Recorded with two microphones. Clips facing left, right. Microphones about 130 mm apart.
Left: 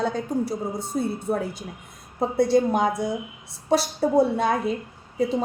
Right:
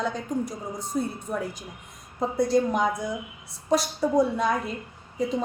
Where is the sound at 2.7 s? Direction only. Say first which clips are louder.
Left 3 dB; 30° left (ahead or behind).